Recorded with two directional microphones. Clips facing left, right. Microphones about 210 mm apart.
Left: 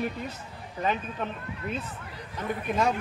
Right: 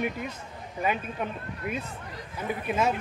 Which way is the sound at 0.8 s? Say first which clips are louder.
Even; 10° right (ahead or behind).